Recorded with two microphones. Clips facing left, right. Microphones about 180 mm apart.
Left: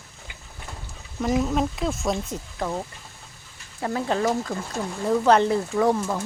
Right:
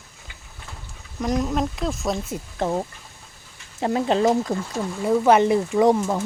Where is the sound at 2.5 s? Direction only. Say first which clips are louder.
Right 5 dB; 25° right (ahead or behind).